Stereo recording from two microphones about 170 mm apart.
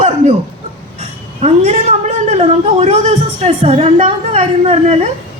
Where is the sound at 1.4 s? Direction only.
40° right (ahead or behind).